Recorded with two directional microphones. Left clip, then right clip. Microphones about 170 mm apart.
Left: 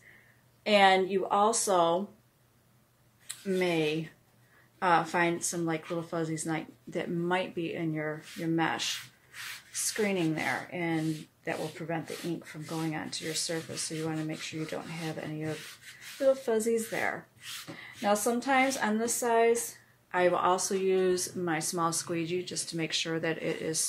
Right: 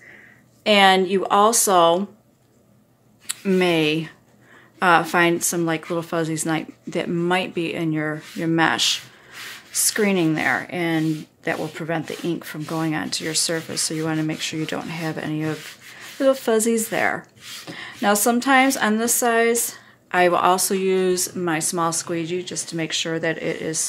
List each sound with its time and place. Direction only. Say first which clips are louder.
0.7 s speech: right 8 dB; 40° right (ahead or behind)
3.3 s speech: right 10 dB; 50° right (ahead or behind); by 23.9 s 25° right (ahead or behind)